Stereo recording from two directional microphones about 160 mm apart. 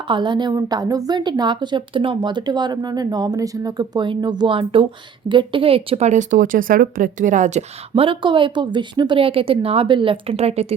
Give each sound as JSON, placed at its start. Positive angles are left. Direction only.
{"t": 0.1, "sound": "a woman's voice", "side_deg": -30}